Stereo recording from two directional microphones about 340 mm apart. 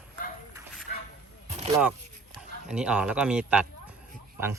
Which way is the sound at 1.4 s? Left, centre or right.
Centre.